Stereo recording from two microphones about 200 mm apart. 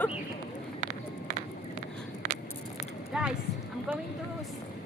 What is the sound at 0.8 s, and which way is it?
Run, 40° right (ahead or behind).